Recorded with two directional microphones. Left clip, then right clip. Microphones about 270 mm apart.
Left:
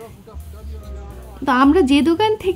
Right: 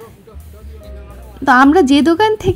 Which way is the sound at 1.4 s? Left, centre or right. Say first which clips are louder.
Right 5 dB; centre.